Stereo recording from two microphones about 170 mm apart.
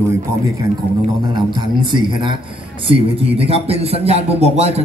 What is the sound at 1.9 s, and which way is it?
A man's voice, 25° right (ahead or behind).